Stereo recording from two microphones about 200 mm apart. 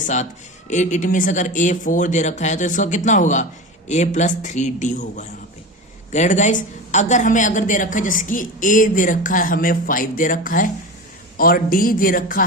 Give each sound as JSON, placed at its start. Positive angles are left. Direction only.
{"t": 0.0, "sound": "a woman's voice", "side_deg": 35}